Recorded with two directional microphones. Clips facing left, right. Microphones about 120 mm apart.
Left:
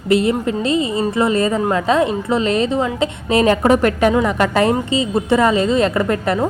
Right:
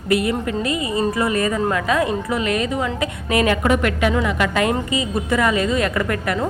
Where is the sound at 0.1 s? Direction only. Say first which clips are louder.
Left 4 dB; 25° left (ahead or behind).